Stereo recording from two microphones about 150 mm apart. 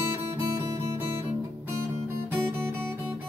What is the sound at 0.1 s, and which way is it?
Music, 15° right (ahead or behind).